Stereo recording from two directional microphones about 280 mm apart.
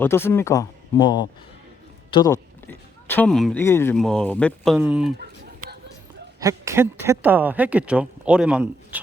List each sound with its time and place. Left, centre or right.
0.0 s speech: centre
6.4 s speech: centre